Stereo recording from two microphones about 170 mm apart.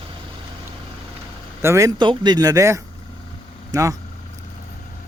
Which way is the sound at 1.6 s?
15° right (ahead or behind).